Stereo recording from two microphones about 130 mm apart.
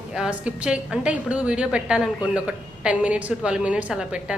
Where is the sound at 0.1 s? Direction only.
5° right (ahead or behind).